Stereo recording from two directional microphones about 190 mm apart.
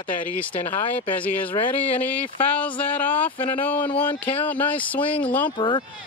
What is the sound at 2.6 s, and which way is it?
Speech, 10° left (ahead or behind).